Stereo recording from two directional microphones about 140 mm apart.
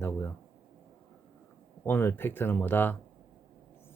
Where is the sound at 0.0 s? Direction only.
15° left (ahead or behind).